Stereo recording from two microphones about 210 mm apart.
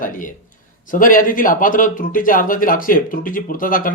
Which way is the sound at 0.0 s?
40° left (ahead or behind).